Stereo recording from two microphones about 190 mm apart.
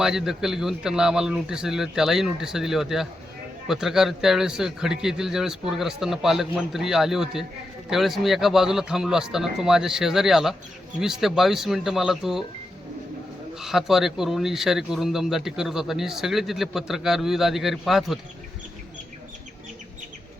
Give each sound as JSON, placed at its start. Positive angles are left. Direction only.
{"t": 0.0, "sound": "a man's voice", "side_deg": -5}
{"t": 13.6, "sound": "a man's voice", "side_deg": 0}